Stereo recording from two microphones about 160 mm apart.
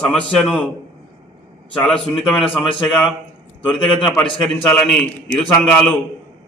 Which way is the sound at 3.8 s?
30° left (ahead or behind).